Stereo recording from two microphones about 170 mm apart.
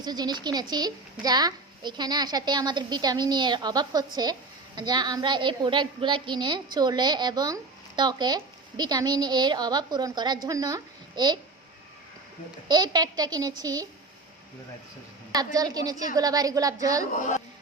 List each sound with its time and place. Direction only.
0.0 s a woman's voice: 25° right (ahead or behind)
12.6 s a woman's voice: 25° right (ahead or behind)
15.5 s a woman's voice: 20° right (ahead or behind)
17.2 s a woman's voice: 45° left (ahead or behind)